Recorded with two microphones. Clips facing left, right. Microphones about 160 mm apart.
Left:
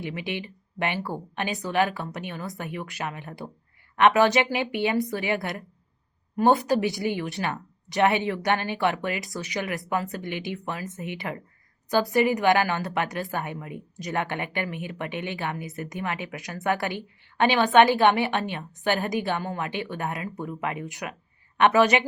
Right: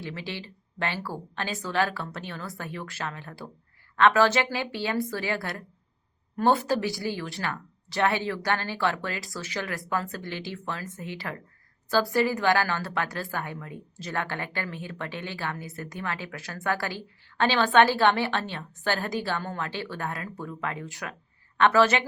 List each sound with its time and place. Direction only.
0.0 s a woman's voice: 15° left (ahead or behind)